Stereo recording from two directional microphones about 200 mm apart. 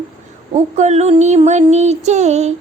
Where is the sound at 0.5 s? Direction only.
35° right (ahead or behind).